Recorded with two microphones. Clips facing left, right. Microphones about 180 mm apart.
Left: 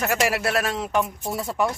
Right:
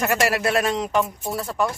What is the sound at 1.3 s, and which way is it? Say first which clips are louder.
Speech: even; 20° left (ahead or behind).